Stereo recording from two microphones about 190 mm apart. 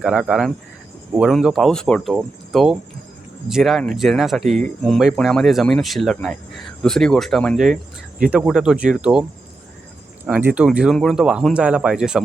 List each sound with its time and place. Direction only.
0.0 s speech: 5° right (ahead or behind)
10.2 s speech: 5° right (ahead or behind)